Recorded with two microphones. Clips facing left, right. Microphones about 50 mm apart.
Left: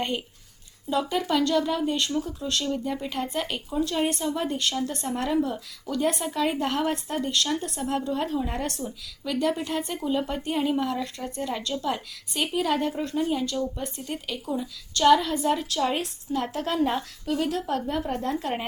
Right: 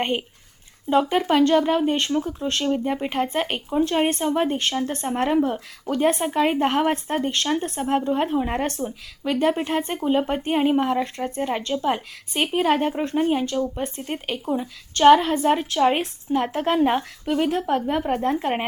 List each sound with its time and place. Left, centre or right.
0.0 s speech: right